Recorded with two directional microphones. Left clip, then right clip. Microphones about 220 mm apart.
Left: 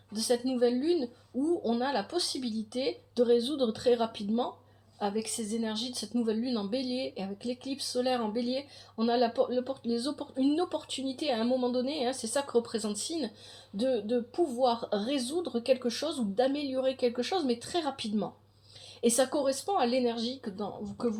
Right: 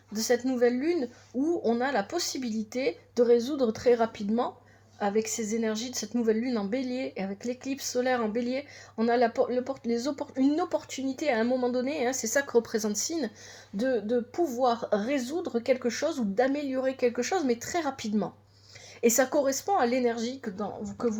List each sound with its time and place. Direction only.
0.1 s a woman's voice: 30° right (ahead or behind)